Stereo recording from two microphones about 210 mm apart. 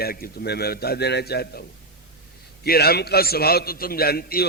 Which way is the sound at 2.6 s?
50° left (ahead or behind).